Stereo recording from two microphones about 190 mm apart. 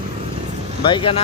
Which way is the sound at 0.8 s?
25° left (ahead or behind).